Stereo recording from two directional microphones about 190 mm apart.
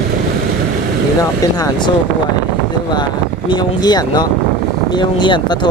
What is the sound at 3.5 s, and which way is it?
Speech, 25° left (ahead or behind).